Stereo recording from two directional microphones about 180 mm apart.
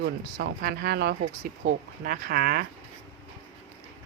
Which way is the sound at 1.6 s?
50° right (ahead or behind).